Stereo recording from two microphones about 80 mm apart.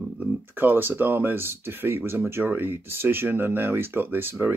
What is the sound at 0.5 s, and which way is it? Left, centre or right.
Speech, right.